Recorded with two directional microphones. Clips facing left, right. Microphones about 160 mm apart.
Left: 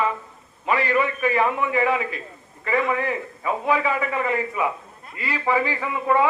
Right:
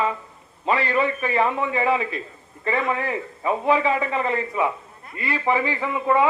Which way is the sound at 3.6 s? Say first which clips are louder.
Right 2 dB; 25° right (ahead or behind).